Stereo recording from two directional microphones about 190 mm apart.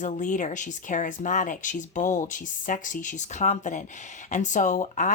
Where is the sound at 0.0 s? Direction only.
40° left (ahead or behind).